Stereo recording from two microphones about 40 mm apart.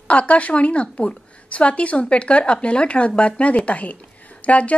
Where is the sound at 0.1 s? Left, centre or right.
Left.